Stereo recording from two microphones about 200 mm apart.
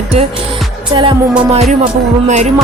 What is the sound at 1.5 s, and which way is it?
Speech, 30° right (ahead or behind).